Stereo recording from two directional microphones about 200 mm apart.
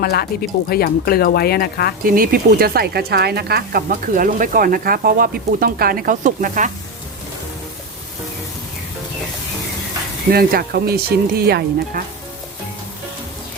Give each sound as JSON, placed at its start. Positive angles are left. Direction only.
{"t": 0.0, "sound": "speech", "side_deg": 50}
{"t": 2.0, "sound": "speech", "side_deg": -45}
{"t": 10.3, "sound": "speech", "side_deg": -50}